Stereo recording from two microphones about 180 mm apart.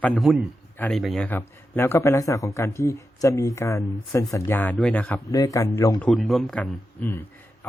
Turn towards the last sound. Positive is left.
turn(degrees=10)  # may be behind; listen again after turning